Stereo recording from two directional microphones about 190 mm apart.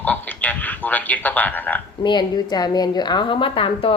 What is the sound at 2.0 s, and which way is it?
A woman's voice, 25° left (ahead or behind).